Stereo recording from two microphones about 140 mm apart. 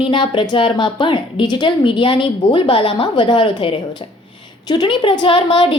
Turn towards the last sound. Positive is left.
turn(degrees=40)  # may be behind; listen again after turning